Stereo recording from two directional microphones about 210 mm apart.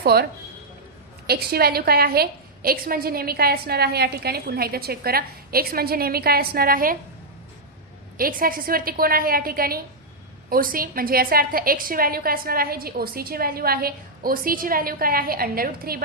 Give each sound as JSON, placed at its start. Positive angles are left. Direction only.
{"t": 0.0, "sound": "speech", "side_deg": -50}
{"t": 1.3, "sound": "a woman's voice", "side_deg": -45}
{"t": 8.2, "sound": "a woman's voice", "side_deg": -45}